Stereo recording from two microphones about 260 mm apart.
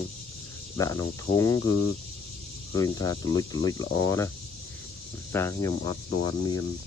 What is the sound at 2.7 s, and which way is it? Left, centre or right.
Cricket, centre.